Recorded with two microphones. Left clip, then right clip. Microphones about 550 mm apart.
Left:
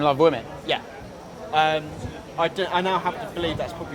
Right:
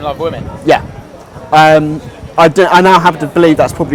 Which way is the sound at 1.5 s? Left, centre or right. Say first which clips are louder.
Right 15 dB; right.